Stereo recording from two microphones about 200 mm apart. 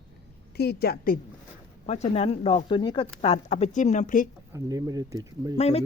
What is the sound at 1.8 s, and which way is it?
Speech, 30° left (ahead or behind).